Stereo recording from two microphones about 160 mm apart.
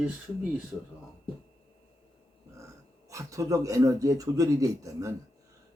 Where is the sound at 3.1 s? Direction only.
20° right (ahead or behind).